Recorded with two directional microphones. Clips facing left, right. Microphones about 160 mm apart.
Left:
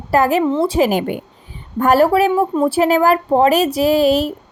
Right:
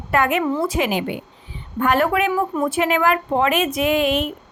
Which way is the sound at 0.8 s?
45° left (ahead or behind).